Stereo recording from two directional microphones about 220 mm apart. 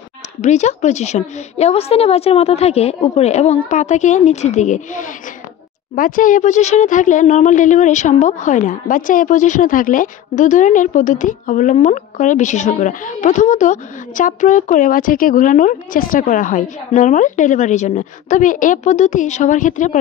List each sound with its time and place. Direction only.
0.4 s speech: 30° left (ahead or behind)